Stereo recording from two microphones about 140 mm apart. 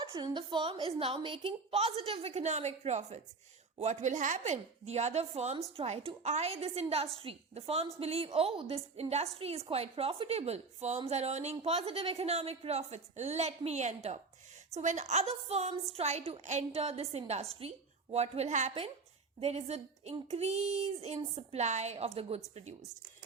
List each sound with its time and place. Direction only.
0.0 s a woman's voice: 30° right (ahead or behind); by 22.4 s 45° right (ahead or behind)